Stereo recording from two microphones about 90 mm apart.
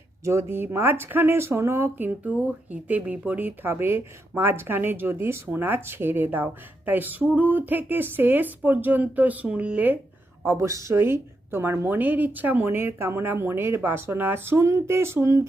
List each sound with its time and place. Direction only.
0.3 s speech: 30° right (ahead or behind)
10.4 s speech: 30° right (ahead or behind)